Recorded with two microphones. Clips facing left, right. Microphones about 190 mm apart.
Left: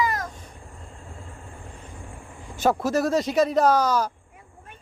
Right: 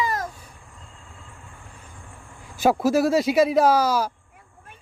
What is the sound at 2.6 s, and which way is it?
Speech, 10° right (ahead or behind).